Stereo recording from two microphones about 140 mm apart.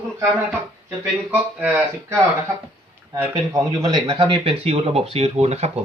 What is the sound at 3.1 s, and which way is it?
Speech, 20° right (ahead or behind).